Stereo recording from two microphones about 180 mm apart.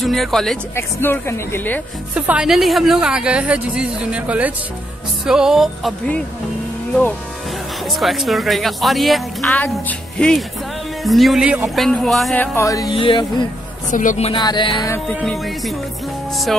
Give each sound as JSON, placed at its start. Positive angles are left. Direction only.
{"t": 0.0, "sound": "speech", "side_deg": 0}
{"t": 0.7, "sound": "speech", "side_deg": 15}
{"t": 2.1, "sound": "speech", "side_deg": -5}
{"t": 7.9, "sound": "speech", "side_deg": 0}
{"t": 12.5, "sound": "speech", "side_deg": 20}
{"t": 12.9, "sound": "music", "side_deg": 30}
{"t": 13.8, "sound": "speech", "side_deg": 45}
{"t": 14.4, "sound": "music", "side_deg": 25}
{"t": 15.0, "sound": "speech", "side_deg": 5}